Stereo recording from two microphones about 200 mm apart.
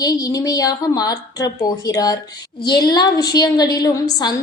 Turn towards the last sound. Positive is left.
turn(degrees=20)  # may be behind; listen again after turning